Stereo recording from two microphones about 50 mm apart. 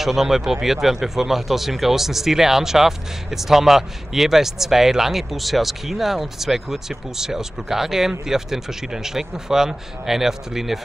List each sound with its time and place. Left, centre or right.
0.0 s speech: centre